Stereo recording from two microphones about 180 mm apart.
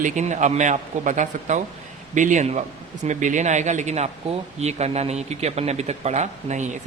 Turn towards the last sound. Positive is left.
turn(degrees=-40)  # may be behind; listen again after turning